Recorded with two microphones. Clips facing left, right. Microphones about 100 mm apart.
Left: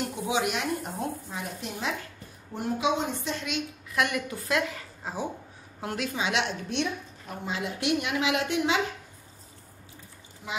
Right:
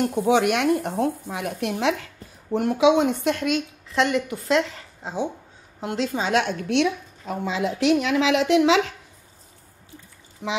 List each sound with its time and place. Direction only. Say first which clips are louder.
0.1 s a woman's voice: right 9 dB; 55° right (ahead or behind)
3.9 s a woman's voice: right 6 dB; 25° right (ahead or behind); by 6.6 s 45° right (ahead or behind)
6.7 s a woman's voice: right 9 dB; 80° right
10.4 s a woman's voice: right 8 dB; 65° right (ahead or behind)